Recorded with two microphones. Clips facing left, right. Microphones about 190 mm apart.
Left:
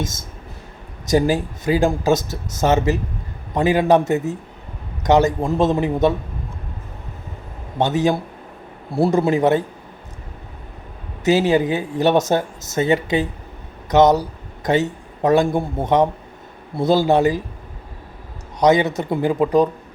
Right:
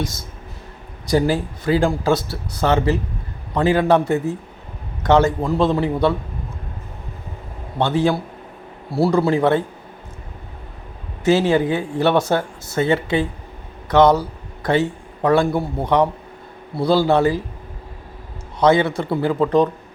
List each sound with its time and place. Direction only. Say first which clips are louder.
1.1 s a man's voice: left 1 dB; 15° left (ahead or behind)
5.0 s a man's voice: even; 15° left (ahead or behind)
7.9 s a man's voice: right 1 dB; 15° left (ahead or behind)
11.2 s a man's voice: even; 15° left (ahead or behind)
18.6 s a man's voice: even; 15° left (ahead or behind)